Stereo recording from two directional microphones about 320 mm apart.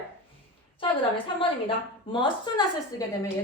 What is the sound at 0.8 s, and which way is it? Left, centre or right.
A woman's voice, centre.